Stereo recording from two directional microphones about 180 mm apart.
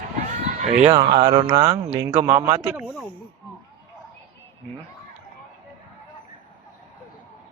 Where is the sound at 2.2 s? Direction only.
15° right (ahead or behind).